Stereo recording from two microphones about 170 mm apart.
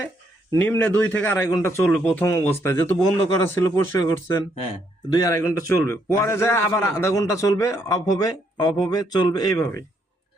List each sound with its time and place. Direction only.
0.5 s a man's voice: 10° left (ahead or behind)